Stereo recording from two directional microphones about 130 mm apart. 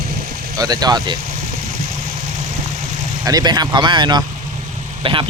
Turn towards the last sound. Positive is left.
turn(degrees=-40)  # may be behind; listen again after turning